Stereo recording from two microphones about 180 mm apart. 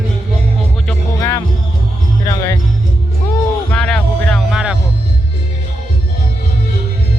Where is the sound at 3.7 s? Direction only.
5° left (ahead or behind).